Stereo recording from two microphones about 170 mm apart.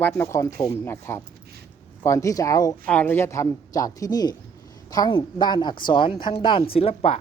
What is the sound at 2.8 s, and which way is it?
Speech, 10° left (ahead or behind).